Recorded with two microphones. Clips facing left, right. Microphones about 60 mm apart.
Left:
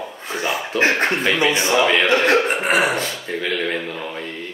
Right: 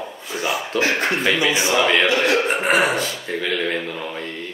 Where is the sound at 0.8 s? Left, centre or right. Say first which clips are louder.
Left 3 dB; left.